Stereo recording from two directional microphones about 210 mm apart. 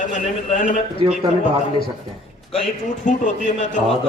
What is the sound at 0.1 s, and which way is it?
Speech, 35° left (ahead or behind).